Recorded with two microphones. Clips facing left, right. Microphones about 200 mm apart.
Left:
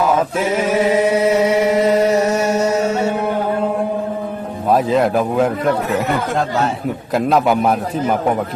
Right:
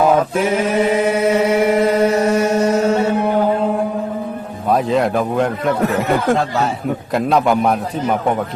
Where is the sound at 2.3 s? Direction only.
55° right (ahead or behind).